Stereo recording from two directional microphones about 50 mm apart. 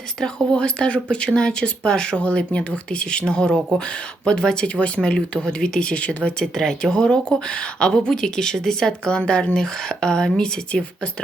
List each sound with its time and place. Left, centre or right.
0.2 s speech: centre
6.5 s speech: centre